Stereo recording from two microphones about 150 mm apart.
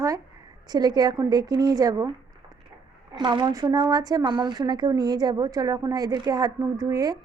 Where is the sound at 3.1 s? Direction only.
30° right (ahead or behind).